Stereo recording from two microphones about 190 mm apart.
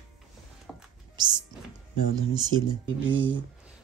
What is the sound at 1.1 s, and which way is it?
Music, 25° right (ahead or behind).